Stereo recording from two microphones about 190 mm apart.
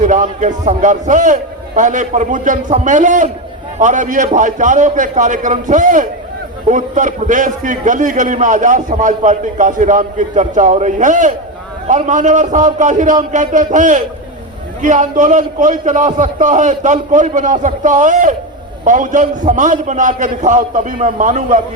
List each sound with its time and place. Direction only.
0.0 s a man's voice: 40° right (ahead or behind)